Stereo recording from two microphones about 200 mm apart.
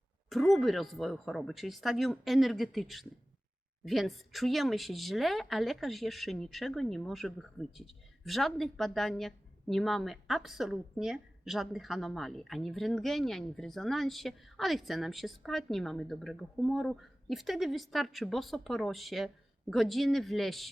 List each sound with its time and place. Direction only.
0.3 s speech: centre (ahead or behind)